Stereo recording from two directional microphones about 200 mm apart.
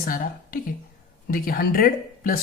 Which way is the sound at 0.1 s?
45° left (ahead or behind).